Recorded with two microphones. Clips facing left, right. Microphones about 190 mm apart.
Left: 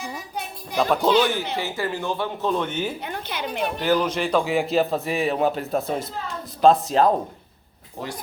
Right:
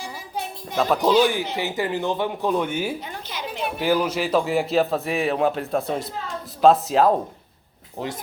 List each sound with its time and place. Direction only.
1.0 s speech: 10° right (ahead or behind)
3.0 s a sound: 60° left (ahead or behind)
3.8 s a man's voice: 10° right (ahead or behind)